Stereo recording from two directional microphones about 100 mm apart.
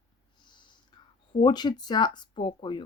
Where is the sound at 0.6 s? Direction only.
50° left (ahead or behind).